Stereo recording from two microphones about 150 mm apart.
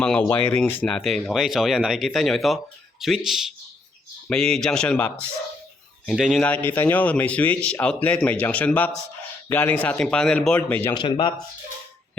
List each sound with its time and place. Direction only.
0.0 s a man's voice: 5° left (ahead or behind)
6.4 s a man's voice: 10° left (ahead or behind)
10.9 s speech: 35° left (ahead or behind)